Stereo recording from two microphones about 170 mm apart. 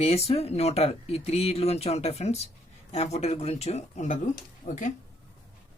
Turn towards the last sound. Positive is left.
turn(degrees=50)  # may be behind; listen again after turning